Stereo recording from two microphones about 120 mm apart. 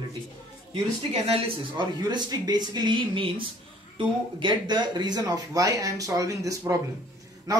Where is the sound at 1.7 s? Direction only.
35° right (ahead or behind).